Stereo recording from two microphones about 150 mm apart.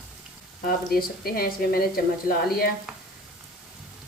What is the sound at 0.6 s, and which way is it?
Speech, 85° left.